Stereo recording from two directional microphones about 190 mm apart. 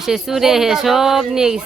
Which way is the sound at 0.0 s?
Centre (ahead or behind).